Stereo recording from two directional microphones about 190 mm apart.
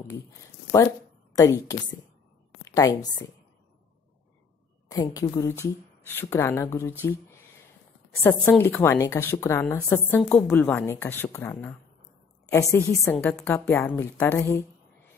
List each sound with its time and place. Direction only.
1.3 s a woman's voice: 15° left (ahead or behind)
4.8 s speech: 20° left (ahead or behind)
12.7 s speech: 10° left (ahead or behind)